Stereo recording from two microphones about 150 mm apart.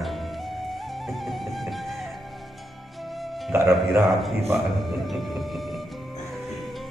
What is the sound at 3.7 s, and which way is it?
Speech, centre (ahead or behind).